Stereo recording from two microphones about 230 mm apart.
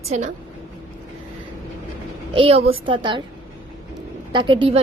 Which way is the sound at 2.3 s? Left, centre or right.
Right.